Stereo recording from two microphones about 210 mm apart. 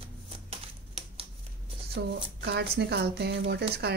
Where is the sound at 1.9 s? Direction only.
50° right (ahead or behind).